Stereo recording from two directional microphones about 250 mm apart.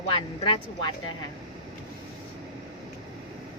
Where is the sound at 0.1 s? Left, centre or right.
Centre.